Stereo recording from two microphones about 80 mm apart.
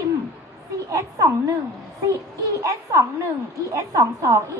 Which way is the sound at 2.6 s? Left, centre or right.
Right.